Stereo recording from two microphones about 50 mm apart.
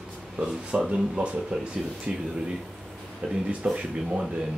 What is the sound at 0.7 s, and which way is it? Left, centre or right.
Speech, centre.